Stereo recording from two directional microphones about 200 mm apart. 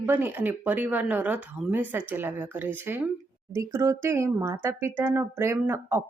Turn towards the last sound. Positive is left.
turn(degrees=-10)  # may be behind; listen again after turning